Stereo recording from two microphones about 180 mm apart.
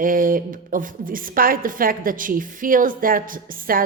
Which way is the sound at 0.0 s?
50° right (ahead or behind).